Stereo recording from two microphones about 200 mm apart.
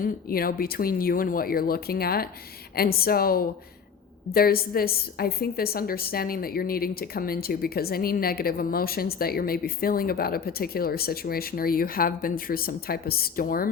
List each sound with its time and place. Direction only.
0.0 s a woman's voice: 45° left (ahead or behind)